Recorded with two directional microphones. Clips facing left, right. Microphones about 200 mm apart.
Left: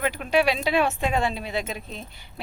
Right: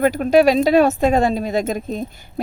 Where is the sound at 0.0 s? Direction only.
45° right (ahead or behind).